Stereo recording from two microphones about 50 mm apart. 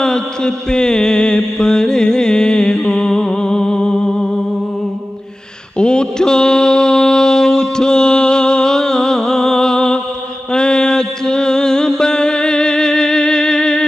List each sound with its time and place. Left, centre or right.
0.0 s mantra: centre
5.8 s mantra: centre